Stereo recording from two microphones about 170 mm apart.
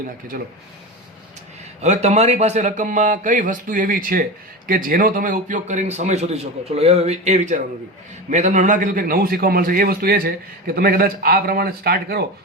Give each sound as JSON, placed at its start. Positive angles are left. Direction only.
{"t": 1.8, "sound": "a man's voice", "side_deg": -40}